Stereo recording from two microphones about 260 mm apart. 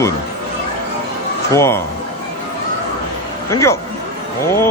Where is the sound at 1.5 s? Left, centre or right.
Centre.